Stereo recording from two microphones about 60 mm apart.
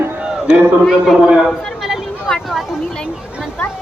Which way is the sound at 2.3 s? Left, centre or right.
Centre.